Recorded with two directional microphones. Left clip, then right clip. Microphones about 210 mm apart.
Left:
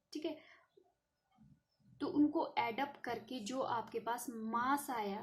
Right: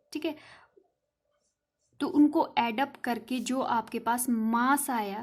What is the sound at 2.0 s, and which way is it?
Speech, 35° right (ahead or behind).